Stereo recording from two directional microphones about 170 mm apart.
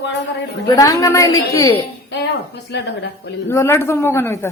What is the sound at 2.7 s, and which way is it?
Speech, 90° left.